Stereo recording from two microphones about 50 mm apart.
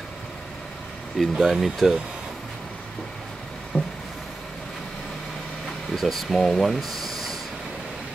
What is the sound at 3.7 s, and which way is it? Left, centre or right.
Vehicle, left.